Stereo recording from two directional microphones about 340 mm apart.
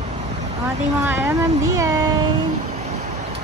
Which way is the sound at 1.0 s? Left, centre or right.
Centre.